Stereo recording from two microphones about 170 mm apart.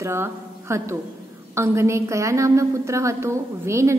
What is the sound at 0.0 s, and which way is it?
A woman's voice, 15° right (ahead or behind).